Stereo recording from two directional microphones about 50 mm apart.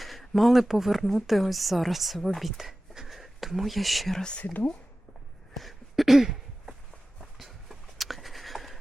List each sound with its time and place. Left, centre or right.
0.0 s speech: centre
4.2 s speech: left
5.5 s a sound: centre